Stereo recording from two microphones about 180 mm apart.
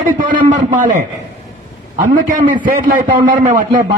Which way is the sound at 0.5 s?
45° right (ahead or behind).